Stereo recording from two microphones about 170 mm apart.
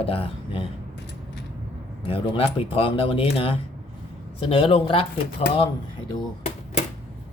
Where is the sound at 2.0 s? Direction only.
30° left (ahead or behind).